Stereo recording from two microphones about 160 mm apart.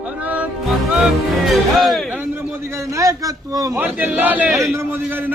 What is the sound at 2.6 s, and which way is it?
Speech, 20° right (ahead or behind).